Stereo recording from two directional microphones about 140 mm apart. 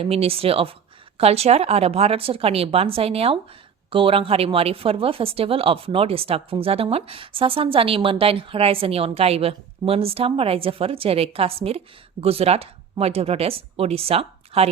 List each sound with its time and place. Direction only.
0.0 s a woman's voice: 45° right (ahead or behind)